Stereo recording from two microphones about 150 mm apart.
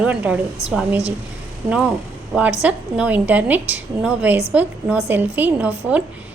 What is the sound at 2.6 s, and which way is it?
A woman's voice, 10° right (ahead or behind).